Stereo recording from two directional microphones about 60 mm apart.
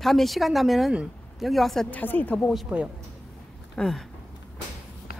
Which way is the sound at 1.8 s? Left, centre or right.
Left.